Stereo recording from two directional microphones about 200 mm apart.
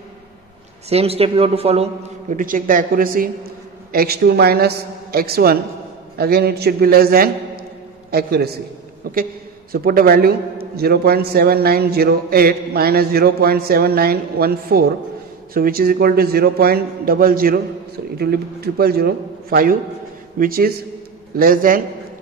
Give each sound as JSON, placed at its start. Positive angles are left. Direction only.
{"t": 0.8, "sound": "a man's voice", "side_deg": -30}